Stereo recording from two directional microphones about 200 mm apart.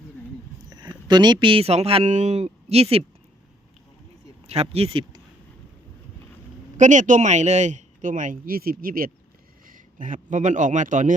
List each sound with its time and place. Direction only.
0.7 s speech: 20° right (ahead or behind)
4.4 s speech: 30° right (ahead or behind)
6.7 s a man's voice: 40° right (ahead or behind)